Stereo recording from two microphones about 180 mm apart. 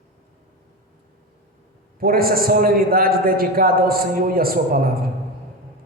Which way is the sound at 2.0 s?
55° right (ahead or behind).